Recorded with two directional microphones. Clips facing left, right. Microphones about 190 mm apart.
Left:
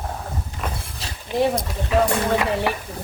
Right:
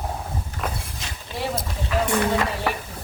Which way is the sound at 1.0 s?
35° left (ahead or behind).